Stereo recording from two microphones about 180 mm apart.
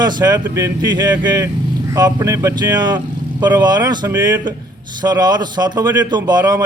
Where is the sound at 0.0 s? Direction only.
25° right (ahead or behind).